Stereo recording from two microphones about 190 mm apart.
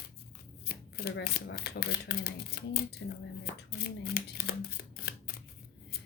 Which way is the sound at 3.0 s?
70° left (ahead or behind).